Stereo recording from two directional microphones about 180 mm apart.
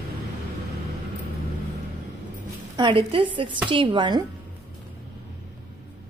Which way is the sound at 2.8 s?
30° right (ahead or behind).